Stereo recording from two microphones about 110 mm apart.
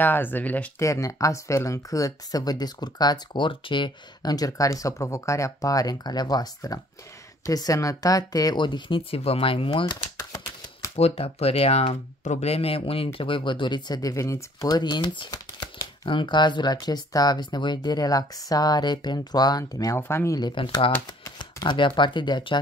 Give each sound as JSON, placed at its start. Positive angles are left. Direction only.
{"t": 0.0, "sound": "speech", "side_deg": 20}
{"t": 0.7, "sound": "speech", "side_deg": 30}
{"t": 10.1, "sound": "a sound", "side_deg": 30}
{"t": 11.0, "sound": "speech", "side_deg": 65}
{"t": 20.0, "sound": "speech", "side_deg": 20}
{"t": 20.3, "sound": "speech", "side_deg": 40}